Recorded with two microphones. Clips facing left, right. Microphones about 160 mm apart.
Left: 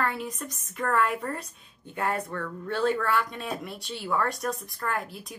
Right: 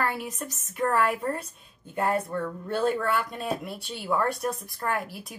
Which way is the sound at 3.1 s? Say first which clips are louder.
Right 1 dB; centre (ahead or behind).